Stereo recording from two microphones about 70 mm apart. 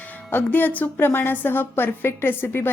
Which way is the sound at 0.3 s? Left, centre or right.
Left.